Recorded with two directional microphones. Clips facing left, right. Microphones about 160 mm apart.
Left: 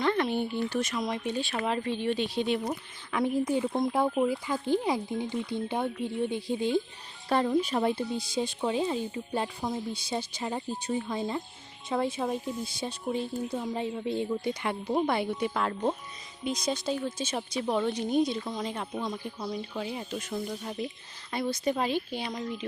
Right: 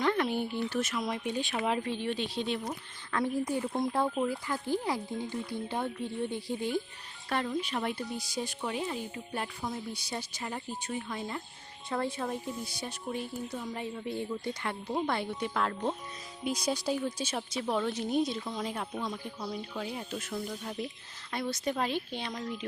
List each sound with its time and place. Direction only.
0.0 s speech: 10° right (ahead or behind)
2.0 s speech: 5° left (ahead or behind); by 6.8 s 20° left (ahead or behind)
7.3 s speech: 30° left (ahead or behind); by 15.7 s 5° left (ahead or behind)
16.4 s speech: 10° right (ahead or behind)
19.0 s speech: 15° left (ahead or behind)
19.9 s speech: centre (ahead or behind)